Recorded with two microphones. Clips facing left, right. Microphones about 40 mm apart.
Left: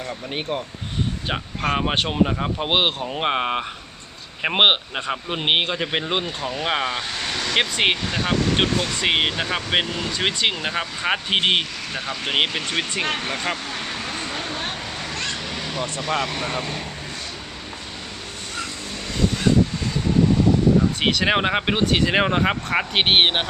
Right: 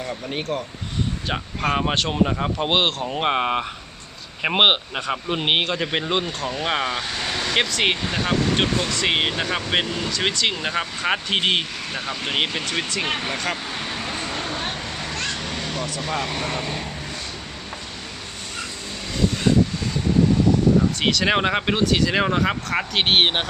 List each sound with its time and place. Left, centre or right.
0.3 s speech: left
1.6 s speech: centre
7.7 s speech: centre
8.0 s speech: centre
11.9 s speech: centre
12.3 s speech: centre
13.1 s speech: centre
13.7 s vehicle: centre
16.0 s speech: centre
21.0 s speech: centre
21.8 s speech: left